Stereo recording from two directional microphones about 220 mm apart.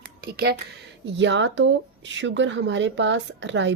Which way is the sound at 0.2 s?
45° right (ahead or behind).